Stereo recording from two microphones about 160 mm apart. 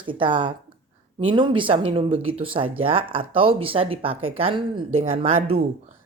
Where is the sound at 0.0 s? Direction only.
30° right (ahead or behind).